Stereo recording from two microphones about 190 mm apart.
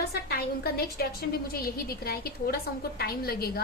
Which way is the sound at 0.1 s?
55° left (ahead or behind).